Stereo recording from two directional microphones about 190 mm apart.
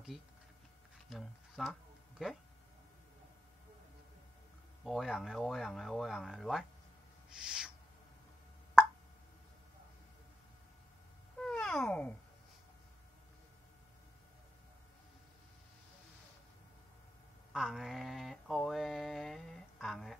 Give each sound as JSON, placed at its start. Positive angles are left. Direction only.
{"t": 1.1, "sound": "a sound", "side_deg": 0}
{"t": 4.8, "sound": "speech", "side_deg": 0}
{"t": 7.3, "sound": "owl", "side_deg": -5}
{"t": 11.3, "sound": "cat", "side_deg": 5}
{"t": 17.5, "sound": "mantra", "side_deg": 0}